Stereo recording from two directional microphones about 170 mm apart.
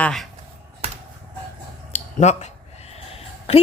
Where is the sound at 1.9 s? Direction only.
40° left (ahead or behind).